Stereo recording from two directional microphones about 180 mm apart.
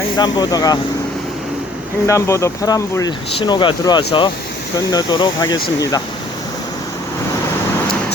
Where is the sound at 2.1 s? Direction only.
15° left (ahead or behind).